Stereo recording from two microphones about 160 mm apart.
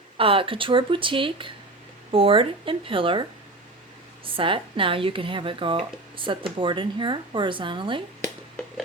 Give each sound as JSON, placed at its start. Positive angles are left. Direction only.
{"t": 0.2, "sound": "speech", "side_deg": -35}
{"t": 4.4, "sound": "speech", "side_deg": -35}